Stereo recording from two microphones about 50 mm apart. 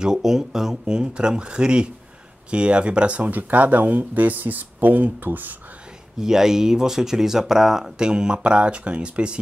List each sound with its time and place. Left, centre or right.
0.0 s speech: centre; by 5.6 s right
6.2 s speech: centre